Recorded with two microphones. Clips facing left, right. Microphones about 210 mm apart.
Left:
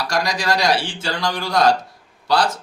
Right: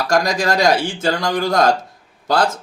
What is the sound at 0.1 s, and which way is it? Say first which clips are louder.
Speech: right 5 dB; 45° right (ahead or behind).